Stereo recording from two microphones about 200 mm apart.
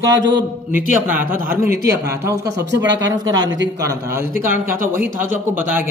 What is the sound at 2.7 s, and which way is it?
A man's voice, 65° right (ahead or behind).